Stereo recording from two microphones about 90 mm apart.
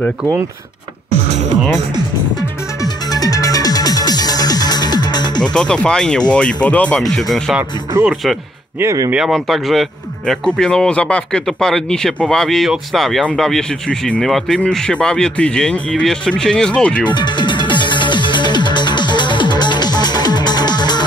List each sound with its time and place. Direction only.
2.8 s music: 40° left (ahead or behind)
5.4 s speech: 10° left (ahead or behind)
7.0 s speech: centre (ahead or behind)
17.1 s music: 55° left (ahead or behind)